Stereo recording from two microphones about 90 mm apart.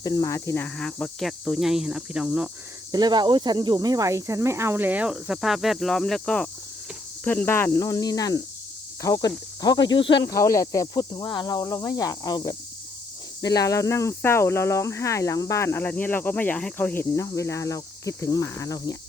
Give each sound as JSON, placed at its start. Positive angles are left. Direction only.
{"t": 0.0, "sound": "speech", "side_deg": 45}
{"t": 0.8, "sound": "cricket", "side_deg": 10}
{"t": 1.3, "sound": "speech", "side_deg": 0}
{"t": 2.9, "sound": "speech", "side_deg": -50}
{"t": 5.1, "sound": "speech", "side_deg": -5}
{"t": 7.3, "sound": "speech", "side_deg": 20}
{"t": 7.8, "sound": "speech", "side_deg": 45}
{"t": 10.2, "sound": "speech", "side_deg": 40}
{"t": 13.4, "sound": "speech", "side_deg": 45}
{"t": 17.3, "sound": "speech", "side_deg": 35}